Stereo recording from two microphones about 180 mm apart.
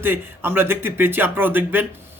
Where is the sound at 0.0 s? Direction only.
10° right (ahead or behind).